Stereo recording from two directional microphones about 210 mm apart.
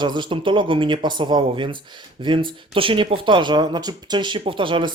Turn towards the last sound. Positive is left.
turn(degrees=-25)  # may be behind; listen again after turning